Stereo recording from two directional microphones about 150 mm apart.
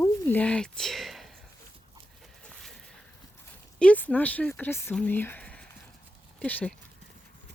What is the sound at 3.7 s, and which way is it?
Speech, 10° left (ahead or behind).